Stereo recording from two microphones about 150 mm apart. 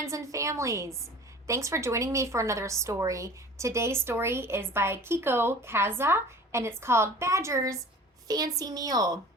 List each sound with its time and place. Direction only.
0.0 s a woman's voice: 20° right (ahead or behind)